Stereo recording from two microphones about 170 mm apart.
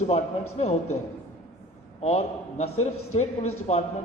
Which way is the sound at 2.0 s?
40° left (ahead or behind).